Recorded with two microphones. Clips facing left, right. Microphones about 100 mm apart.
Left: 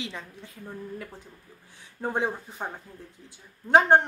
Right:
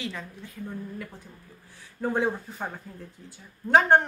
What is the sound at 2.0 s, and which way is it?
Speech, 20° left (ahead or behind).